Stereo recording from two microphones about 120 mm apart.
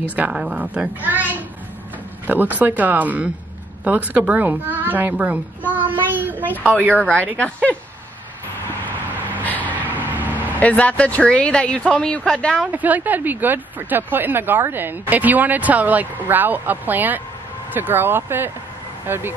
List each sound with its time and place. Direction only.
0.1 s a child's voice: 10° right (ahead or behind)
7.3 s speech: 10° left (ahead or behind)
9.4 s vehicle: 15° left (ahead or behind)
9.8 s vehicle: 15° right (ahead or behind)
10.4 s speech: 10° left (ahead or behind)
12.5 s speech: 15° right (ahead or behind)